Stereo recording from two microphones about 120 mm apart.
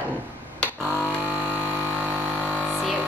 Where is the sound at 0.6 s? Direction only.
10° left (ahead or behind).